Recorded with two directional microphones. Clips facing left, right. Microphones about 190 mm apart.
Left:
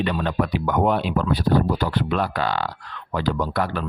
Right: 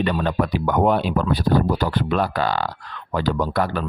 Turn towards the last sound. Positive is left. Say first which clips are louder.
# right 2 dB
turn(degrees=-40)  # may be behind; listen again after turning